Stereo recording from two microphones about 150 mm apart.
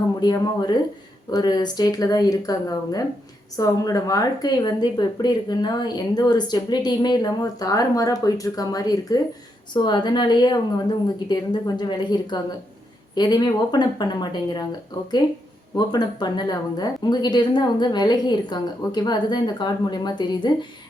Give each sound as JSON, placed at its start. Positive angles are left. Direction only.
{"t": 0.2, "sound": "speech", "side_deg": 30}
{"t": 15.7, "sound": "speech", "side_deg": 30}